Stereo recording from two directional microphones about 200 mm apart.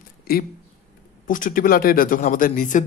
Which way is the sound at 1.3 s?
40° left (ahead or behind).